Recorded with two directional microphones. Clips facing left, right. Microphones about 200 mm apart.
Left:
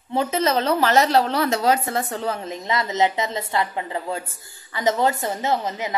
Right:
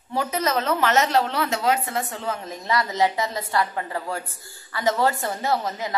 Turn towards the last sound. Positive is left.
turn(degrees=20)  # may be behind; listen again after turning